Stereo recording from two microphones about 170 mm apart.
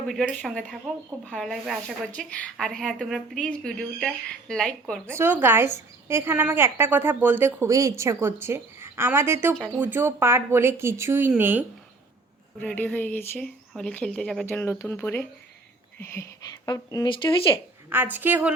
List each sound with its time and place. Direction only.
0.1 s speech: centre (ahead or behind)
5.1 s a woman's voice: 10° right (ahead or behind)
12.5 s speech: 10° left (ahead or behind); by 17.5 s 30° left (ahead or behind)
17.8 s a woman's voice: 10° right (ahead or behind)